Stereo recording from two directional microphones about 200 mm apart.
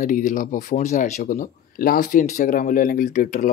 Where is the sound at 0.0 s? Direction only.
40° left (ahead or behind).